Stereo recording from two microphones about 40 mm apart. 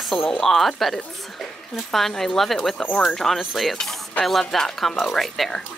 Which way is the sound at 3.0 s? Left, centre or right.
Centre.